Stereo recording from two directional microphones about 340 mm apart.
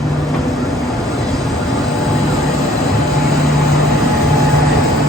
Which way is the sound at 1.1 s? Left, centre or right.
Centre.